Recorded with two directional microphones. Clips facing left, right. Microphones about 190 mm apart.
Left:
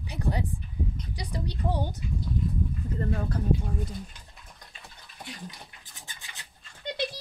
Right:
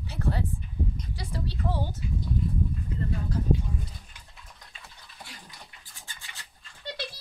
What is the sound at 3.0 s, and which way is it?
Speech, 60° left (ahead or behind).